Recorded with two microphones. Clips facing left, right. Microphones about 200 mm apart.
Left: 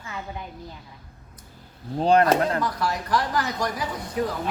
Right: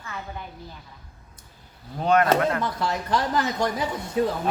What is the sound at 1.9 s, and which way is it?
Speech, 30° left (ahead or behind).